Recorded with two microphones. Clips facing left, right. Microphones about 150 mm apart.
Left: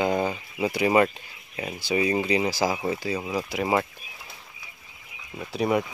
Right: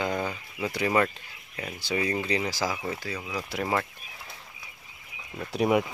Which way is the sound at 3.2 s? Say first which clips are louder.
Left 6 dB; 30° left (ahead or behind).